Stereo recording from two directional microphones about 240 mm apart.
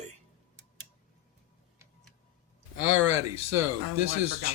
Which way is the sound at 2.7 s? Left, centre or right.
Right.